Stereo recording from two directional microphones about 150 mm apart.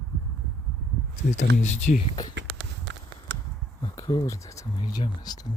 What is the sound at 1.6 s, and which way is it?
Speech, 50° left (ahead or behind).